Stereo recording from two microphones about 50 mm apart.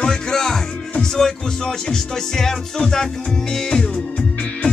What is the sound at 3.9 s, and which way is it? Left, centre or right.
Music, left.